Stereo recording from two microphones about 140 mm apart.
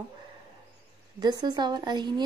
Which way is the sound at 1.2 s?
30° right (ahead or behind).